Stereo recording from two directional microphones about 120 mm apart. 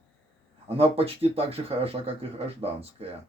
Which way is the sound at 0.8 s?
55° right (ahead or behind).